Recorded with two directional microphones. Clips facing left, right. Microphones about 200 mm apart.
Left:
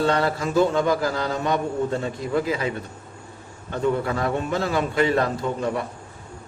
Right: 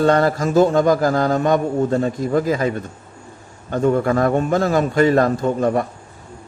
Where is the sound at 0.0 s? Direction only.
45° right (ahead or behind).